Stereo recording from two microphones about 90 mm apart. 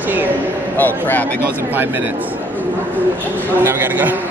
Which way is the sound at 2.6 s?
20° left (ahead or behind).